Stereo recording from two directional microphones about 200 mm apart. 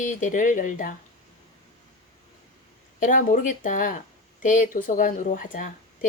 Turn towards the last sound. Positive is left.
turn(degrees=40)  # may be behind; listen again after turning